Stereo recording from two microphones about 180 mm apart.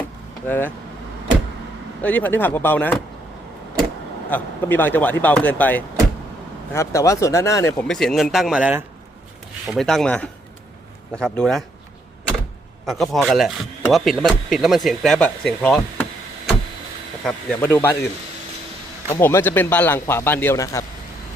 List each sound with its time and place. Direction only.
0.4 s a man's voice: 10° left (ahead or behind)
2.0 s a man's voice: 10° left (ahead or behind)
4.3 s a man's voice: 10° left (ahead or behind)
7.9 s speech: centre (ahead or behind)
12.8 s speech: centre (ahead or behind)
17.2 s a man's voice: 10° left (ahead or behind)
19.1 s a man's voice: 15° left (ahead or behind)